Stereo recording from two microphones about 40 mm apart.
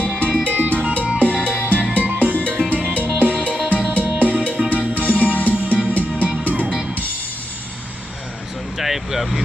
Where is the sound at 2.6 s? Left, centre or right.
Right.